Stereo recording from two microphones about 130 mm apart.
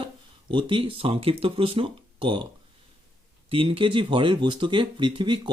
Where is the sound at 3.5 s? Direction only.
45° right (ahead or behind).